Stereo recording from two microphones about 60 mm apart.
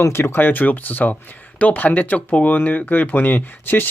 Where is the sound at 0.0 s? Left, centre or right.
Left.